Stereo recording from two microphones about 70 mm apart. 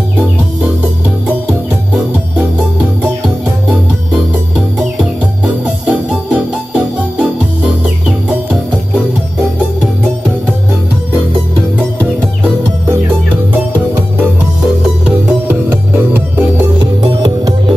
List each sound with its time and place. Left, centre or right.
5.9 s music: centre
14.8 s music: centre
16.8 s music: right